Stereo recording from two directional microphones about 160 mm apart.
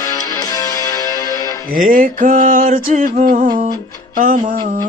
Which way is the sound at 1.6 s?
60° right (ahead or behind).